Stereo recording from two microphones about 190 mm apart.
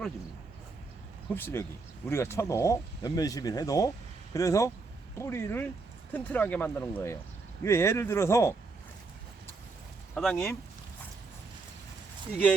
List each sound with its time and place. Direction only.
1.3 s speech: 10° left (ahead or behind)
10.2 s speech: centre (ahead or behind)